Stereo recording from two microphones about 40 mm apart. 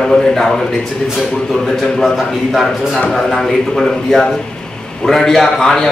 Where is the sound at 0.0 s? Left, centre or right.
Centre.